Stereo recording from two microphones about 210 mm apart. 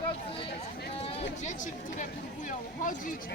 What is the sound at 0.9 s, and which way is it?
Speech, 30° left (ahead or behind).